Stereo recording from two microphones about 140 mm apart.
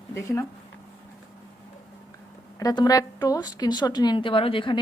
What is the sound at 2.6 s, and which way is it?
A woman's voice, 25° left (ahead or behind).